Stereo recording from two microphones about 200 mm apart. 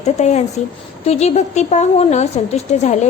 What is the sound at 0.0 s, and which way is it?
A woman's voice, 35° left (ahead or behind).